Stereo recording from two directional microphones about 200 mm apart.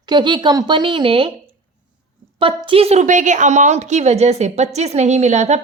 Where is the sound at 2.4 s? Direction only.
25° right (ahead or behind).